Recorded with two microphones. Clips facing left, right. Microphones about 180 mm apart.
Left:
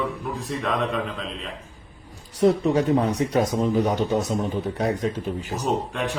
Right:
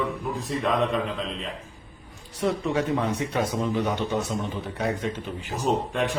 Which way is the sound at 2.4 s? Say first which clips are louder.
Left 6 dB; 40° left (ahead or behind).